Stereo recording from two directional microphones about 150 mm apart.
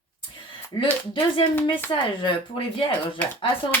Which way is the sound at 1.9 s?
35° left (ahead or behind).